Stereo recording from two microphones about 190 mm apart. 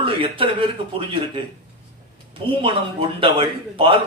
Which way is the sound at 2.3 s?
25° right (ahead or behind).